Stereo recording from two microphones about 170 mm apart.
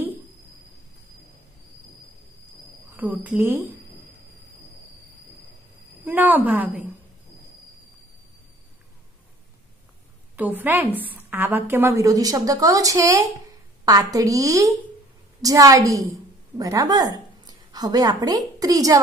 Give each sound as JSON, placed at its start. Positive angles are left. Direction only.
{"t": 3.0, "sound": "a woman's voice", "side_deg": -10}
{"t": 6.0, "sound": "a woman's voice", "side_deg": -10}
{"t": 10.3, "sound": "a woman's voice", "side_deg": -10}